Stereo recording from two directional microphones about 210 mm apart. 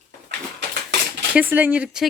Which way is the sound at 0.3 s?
55° right (ahead or behind).